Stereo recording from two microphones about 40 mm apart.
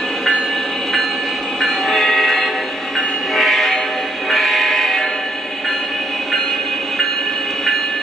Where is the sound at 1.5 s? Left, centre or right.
Centre.